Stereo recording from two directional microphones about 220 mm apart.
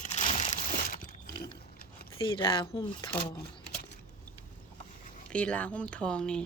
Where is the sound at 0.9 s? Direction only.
40° left (ahead or behind).